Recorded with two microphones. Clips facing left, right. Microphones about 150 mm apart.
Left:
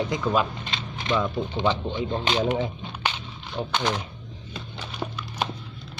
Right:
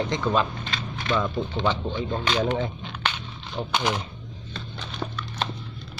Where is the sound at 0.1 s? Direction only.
5° left (ahead or behind).